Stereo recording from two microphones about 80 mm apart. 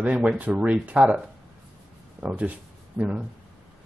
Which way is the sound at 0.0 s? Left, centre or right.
Centre.